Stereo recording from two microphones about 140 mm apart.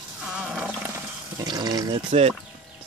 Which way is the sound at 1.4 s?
30° right (ahead or behind).